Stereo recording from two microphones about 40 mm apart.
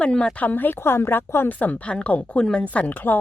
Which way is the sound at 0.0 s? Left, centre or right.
Left.